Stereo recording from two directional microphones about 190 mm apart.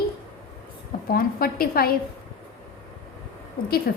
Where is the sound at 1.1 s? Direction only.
50° left (ahead or behind).